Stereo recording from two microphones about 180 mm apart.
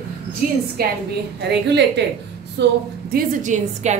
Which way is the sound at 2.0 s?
70° right (ahead or behind).